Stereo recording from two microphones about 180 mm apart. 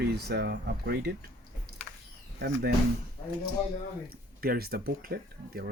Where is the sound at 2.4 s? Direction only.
65° right (ahead or behind).